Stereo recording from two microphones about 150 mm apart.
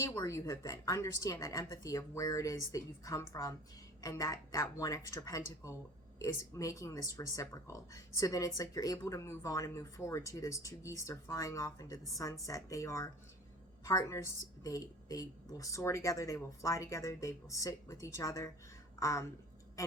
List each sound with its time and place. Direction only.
0.2 s speech: 20° left (ahead or behind)